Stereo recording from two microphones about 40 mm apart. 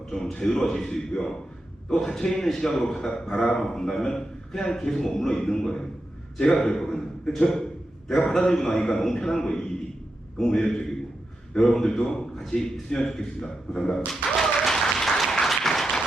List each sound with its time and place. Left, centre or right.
0.1 s a man's voice: centre
14.7 s applause: centre